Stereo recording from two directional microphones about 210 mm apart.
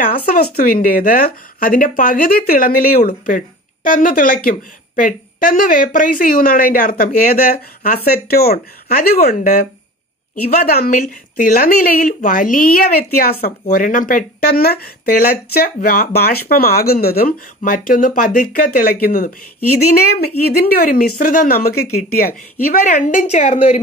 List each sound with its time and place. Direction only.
0.0 s a woman's voice: 45° left (ahead or behind)